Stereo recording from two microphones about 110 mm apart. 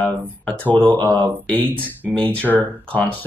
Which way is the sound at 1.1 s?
15° left (ahead or behind).